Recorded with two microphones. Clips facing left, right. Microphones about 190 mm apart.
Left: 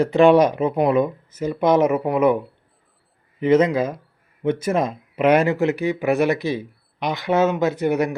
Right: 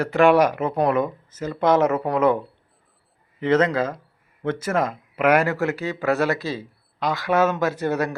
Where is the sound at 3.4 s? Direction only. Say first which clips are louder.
Left 3 dB; 10° left (ahead or behind).